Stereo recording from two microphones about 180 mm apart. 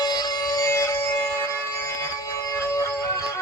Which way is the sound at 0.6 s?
15° left (ahead or behind).